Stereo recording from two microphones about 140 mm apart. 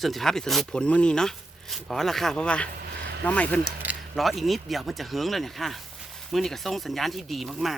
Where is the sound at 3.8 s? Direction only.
Centre (ahead or behind).